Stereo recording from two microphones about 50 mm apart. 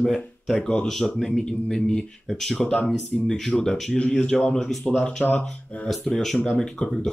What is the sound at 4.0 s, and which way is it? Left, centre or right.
Speech, left.